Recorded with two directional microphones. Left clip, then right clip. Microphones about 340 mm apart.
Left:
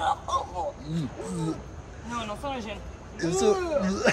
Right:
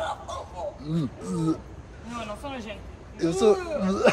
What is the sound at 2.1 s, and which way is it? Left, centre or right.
Speech, centre.